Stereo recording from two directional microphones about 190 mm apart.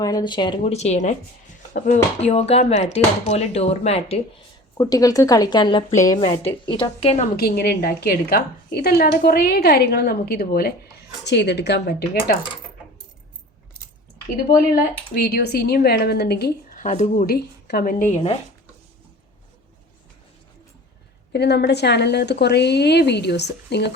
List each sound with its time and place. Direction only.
0.0 s speech: 20° left (ahead or behind)
4.8 s speech: 20° left (ahead or behind)
7.3 s a woman's voice: 55° left (ahead or behind)
14.3 s speech: 50° left (ahead or behind); by 18.3 s 35° left (ahead or behind)
21.3 s a woman's voice: 60° left (ahead or behind)